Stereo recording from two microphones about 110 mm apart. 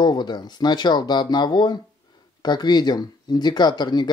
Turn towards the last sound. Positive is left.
turn(degrees=40)  # may be behind; listen again after turning